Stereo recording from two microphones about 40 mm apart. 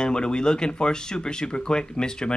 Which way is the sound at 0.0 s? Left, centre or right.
Left.